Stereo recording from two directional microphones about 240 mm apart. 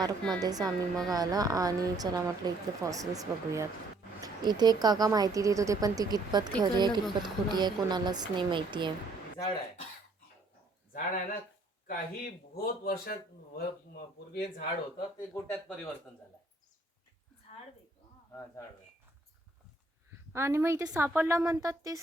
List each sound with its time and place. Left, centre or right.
0.0 s a woman's voice: centre
10.9 s speech: left
15.3 s speech: centre
17.5 s a sound: left
20.3 s a woman's voice: centre